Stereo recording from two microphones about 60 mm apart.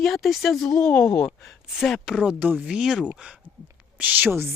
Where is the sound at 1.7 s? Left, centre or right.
Centre.